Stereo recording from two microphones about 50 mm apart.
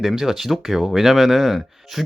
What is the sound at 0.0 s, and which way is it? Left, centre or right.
Speech, centre.